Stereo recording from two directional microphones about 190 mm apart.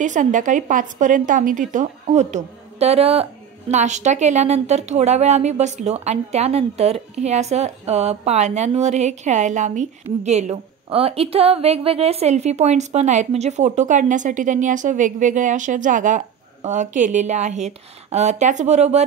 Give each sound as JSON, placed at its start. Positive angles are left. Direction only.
{"t": 0.0, "sound": "a woman's voice", "side_deg": -40}